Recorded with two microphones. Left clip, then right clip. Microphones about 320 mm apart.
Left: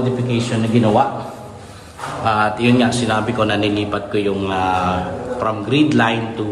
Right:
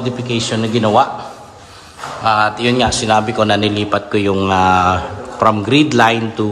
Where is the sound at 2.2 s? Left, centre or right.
Centre.